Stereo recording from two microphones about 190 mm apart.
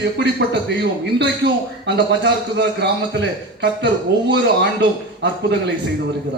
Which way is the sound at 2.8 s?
65° right (ahead or behind).